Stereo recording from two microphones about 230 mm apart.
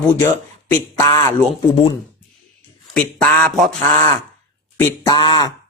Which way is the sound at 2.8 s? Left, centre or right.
Centre.